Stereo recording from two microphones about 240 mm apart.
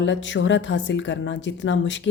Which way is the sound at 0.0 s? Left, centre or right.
Left.